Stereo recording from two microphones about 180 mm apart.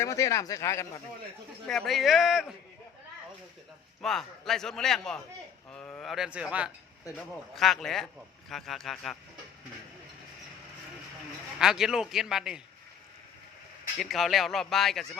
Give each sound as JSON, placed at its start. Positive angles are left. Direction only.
{"t": 0.0, "sound": "speech", "side_deg": 15}
{"t": 1.6, "sound": "a man's voice", "side_deg": 5}
{"t": 4.0, "sound": "a man's voice", "side_deg": 0}
{"t": 11.6, "sound": "a man's voice", "side_deg": 0}
{"t": 14.0, "sound": "a man's voice", "side_deg": 0}